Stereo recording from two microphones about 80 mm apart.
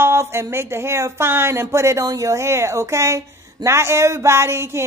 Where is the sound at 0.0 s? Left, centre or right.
Right.